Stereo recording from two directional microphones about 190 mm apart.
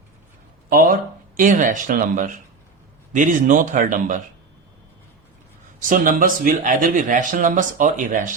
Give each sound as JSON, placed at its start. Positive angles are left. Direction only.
{"t": 0.7, "sound": "speech", "side_deg": -50}
{"t": 5.8, "sound": "speech", "side_deg": -45}